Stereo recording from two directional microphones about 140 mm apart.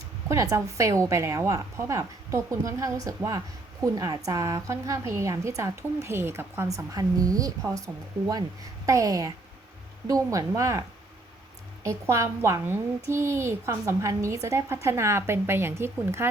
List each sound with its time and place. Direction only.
0.3 s a woman's voice: 20° right (ahead or behind)
8.9 s a woman's voice: 25° right (ahead or behind)